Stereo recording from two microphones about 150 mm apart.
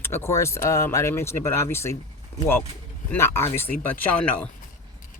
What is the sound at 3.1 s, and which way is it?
Speech, 15° left (ahead or behind).